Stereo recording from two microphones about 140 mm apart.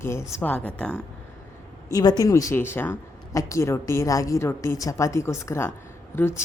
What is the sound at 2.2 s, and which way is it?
A woman's voice, 25° left (ahead or behind).